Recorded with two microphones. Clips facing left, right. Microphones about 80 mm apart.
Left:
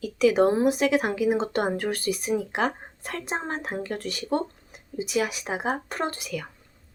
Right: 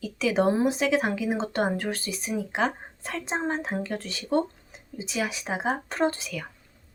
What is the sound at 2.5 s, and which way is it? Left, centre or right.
A woman's voice, centre.